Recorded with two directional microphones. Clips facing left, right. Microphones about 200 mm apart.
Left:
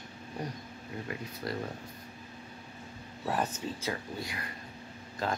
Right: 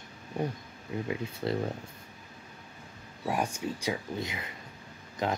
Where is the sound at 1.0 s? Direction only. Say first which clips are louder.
Right 6 dB; 25° right (ahead or behind).